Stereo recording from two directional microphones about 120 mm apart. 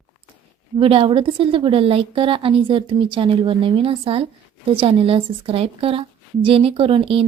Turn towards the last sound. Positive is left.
turn(degrees=-50)  # may be behind; listen again after turning